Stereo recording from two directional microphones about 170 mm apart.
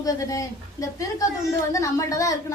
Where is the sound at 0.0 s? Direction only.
20° left (ahead or behind).